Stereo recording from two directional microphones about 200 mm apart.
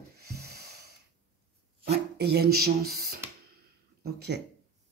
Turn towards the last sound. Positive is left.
turn(degrees=-55)  # may be behind; listen again after turning